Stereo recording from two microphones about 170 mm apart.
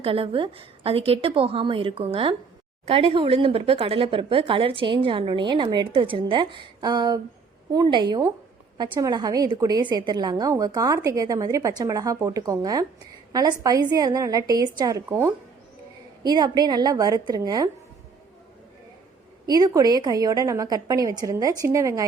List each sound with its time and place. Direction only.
0.0 s a woman's voice: 35° right (ahead or behind)
19.5 s a woman's voice: 20° right (ahead or behind)